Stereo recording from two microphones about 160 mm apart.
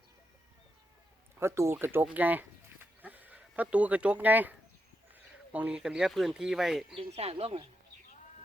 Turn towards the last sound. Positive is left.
turn(degrees=-35)  # may be behind; listen again after turning